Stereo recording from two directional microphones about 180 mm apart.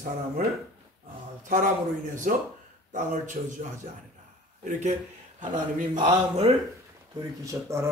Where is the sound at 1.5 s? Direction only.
50° right (ahead or behind).